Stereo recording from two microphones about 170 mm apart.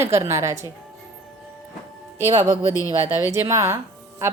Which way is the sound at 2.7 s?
20° left (ahead or behind).